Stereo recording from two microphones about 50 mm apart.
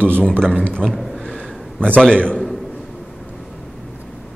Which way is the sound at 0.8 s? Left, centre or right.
Centre.